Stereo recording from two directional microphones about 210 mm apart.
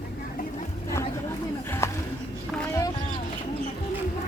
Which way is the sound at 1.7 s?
10° left (ahead or behind).